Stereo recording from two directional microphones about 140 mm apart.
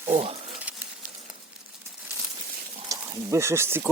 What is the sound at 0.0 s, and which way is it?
Speech, 45° right (ahead or behind).